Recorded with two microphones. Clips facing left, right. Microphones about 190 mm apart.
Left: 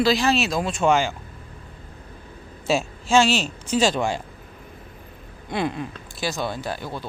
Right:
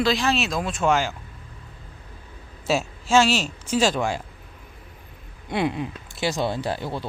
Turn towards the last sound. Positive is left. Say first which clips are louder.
# right 3 dB
turn(degrees=-30)  # may be behind; listen again after turning